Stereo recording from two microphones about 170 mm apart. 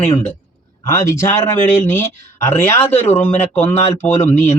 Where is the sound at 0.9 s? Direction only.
15° left (ahead or behind).